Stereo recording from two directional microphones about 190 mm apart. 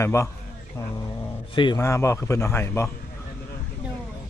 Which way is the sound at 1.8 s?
15° left (ahead or behind).